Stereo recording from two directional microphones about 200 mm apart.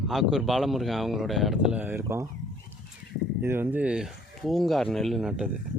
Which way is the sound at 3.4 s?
10° right (ahead or behind).